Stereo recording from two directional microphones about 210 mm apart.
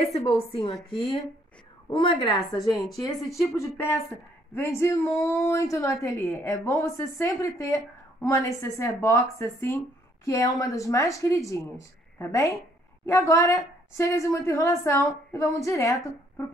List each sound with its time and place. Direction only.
0.0 s a woman's voice: 30° left (ahead or behind)
1.9 s a woman's voice: 25° left (ahead or behind)